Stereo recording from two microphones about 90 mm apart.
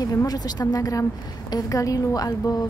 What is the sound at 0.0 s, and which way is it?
A woman's voice, 40° left (ahead or behind).